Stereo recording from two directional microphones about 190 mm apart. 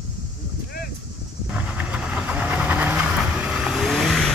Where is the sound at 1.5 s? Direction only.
5° right (ahead or behind).